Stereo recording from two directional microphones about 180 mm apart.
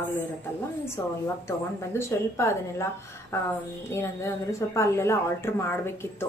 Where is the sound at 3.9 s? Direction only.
15° left (ahead or behind).